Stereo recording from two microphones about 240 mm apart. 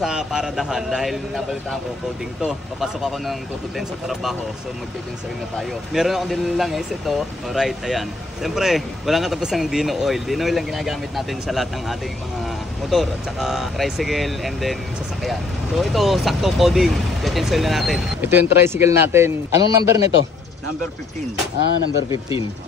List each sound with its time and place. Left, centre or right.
0.0 s speech: centre
5.6 s speech: centre
15.8 s speech: centre
21.5 s speech: left